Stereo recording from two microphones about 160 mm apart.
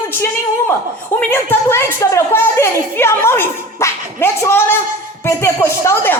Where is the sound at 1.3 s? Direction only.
15° left (ahead or behind).